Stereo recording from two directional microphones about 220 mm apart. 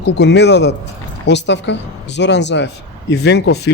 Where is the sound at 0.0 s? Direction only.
50° left (ahead or behind).